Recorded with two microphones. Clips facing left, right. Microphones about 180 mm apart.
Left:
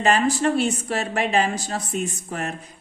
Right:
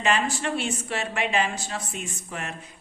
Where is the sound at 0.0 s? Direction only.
40° left (ahead or behind).